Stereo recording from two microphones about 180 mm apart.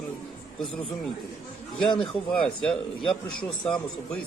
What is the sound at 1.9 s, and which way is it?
Speech, 30° left (ahead or behind).